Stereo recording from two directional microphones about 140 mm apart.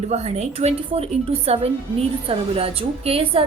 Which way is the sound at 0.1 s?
50° right (ahead or behind).